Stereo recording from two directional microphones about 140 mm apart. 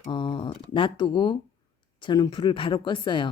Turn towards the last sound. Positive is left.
turn(degrees=35)  # may be behind; listen again after turning